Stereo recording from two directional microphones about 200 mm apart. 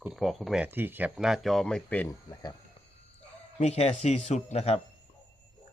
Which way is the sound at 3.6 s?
30° left (ahead or behind).